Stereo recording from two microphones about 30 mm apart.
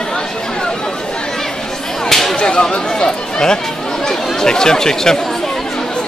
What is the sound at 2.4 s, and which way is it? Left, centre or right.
Chatter, left.